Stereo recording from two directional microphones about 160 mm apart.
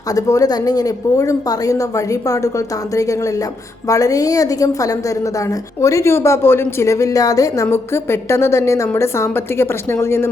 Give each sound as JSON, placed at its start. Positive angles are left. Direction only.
{"t": 0.1, "sound": "a woman's voice", "side_deg": 20}